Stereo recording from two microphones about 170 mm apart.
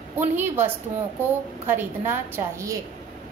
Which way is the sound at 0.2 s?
10° right (ahead or behind).